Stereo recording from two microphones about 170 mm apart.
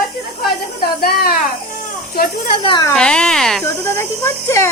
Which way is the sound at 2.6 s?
25° left (ahead or behind).